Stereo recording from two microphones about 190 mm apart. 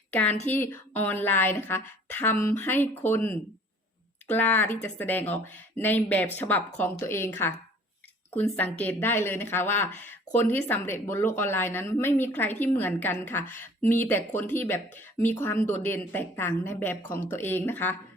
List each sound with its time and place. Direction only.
0.1 s a woman's voice: 10° left (ahead or behind)
4.4 s speech: 10° left (ahead or behind)